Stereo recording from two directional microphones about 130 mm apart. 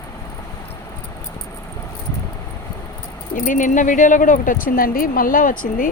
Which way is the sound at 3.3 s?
90° left.